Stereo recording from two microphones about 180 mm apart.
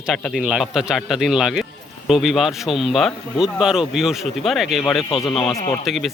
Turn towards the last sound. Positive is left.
turn(degrees=0)  # may be behind; listen again after turning